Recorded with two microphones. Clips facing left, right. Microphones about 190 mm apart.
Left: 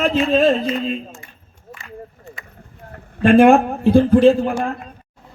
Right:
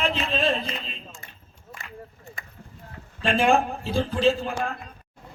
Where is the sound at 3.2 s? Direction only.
55° left (ahead or behind).